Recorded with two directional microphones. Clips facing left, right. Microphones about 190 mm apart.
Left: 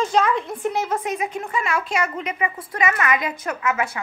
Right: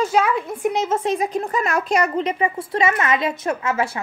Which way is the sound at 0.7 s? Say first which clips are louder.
Right 4 dB; 20° right (ahead or behind).